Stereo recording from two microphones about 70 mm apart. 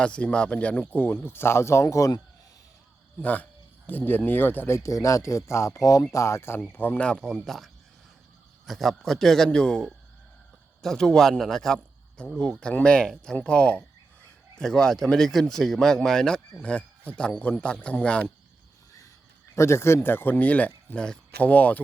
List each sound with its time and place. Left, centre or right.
0.0 s speech: centre; by 2.1 s left
3.2 s speech: left
6.6 s speech: left
7.3 s a man's voice: centre
19.5 s speech: left